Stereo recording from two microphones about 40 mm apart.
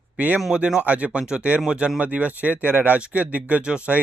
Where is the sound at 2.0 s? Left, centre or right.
Right.